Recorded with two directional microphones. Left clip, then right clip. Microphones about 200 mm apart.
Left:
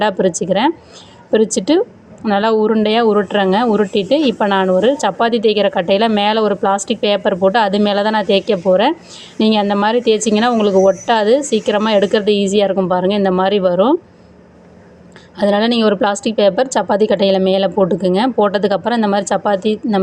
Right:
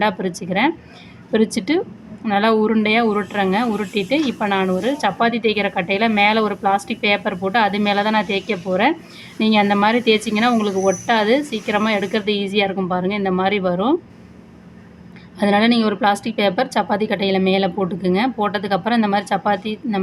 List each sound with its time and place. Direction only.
0.0 s a woman's voice: 20° left (ahead or behind)
15.4 s a woman's voice: 20° left (ahead or behind)